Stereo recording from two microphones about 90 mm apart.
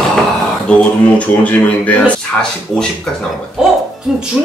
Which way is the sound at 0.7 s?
10° left (ahead or behind).